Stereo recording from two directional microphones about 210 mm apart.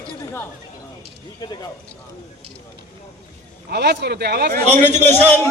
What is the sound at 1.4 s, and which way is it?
Speech, 20° left (ahead or behind).